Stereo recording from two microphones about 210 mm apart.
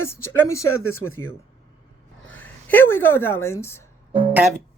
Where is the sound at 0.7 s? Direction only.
85° left.